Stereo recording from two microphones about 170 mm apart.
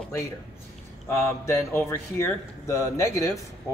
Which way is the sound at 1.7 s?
15° left (ahead or behind).